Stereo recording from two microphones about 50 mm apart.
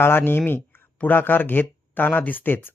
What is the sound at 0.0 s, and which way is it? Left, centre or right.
Speech, left.